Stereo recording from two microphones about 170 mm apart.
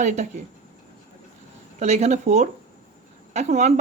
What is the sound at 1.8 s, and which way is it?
Speech, 40° right (ahead or behind).